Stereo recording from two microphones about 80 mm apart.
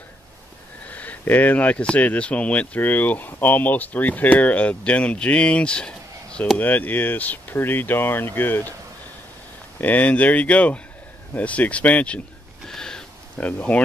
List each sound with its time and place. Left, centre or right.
0.8 s speech: centre
6.6 s speech: left
9.8 s speech: left
12.6 s a sound: centre
13.4 s speech: centre